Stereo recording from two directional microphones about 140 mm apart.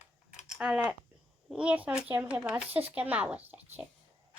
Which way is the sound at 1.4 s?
10° right (ahead or behind).